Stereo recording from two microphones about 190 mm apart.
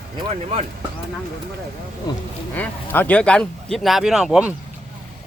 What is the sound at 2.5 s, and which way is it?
Speech, 10° left (ahead or behind).